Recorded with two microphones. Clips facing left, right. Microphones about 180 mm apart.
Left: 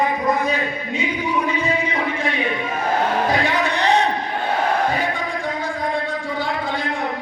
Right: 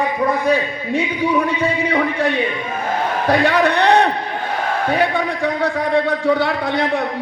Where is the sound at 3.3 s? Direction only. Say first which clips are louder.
Right 5 dB; 65° right (ahead or behind).